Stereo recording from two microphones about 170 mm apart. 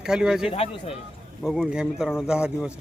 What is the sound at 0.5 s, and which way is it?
Speech, 35° left (ahead or behind).